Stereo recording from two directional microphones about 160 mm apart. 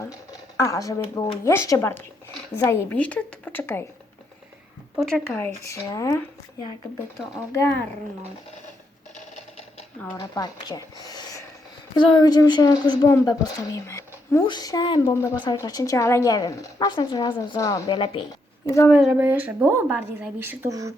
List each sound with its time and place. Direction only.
0.0 s speech: 20° left (ahead or behind)
4.9 s speech: centre (ahead or behind)
5.3 s speech: 15° left (ahead or behind)
9.1 s a sound: 45° left (ahead or behind)
10.2 s speech: 25° left (ahead or behind)
11.0 s a sound: 25° left (ahead or behind)
11.9 s speech: 30° left (ahead or behind)
15.0 s speech: 20° left (ahead or behind)
18.6 s a woman's voice: 20° left (ahead or behind)
18.9 s speech: centre (ahead or behind); by 20.9 s 20° right (ahead or behind)